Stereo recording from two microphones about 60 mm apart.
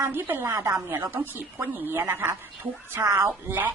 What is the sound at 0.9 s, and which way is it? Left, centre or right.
A woman's voice, right.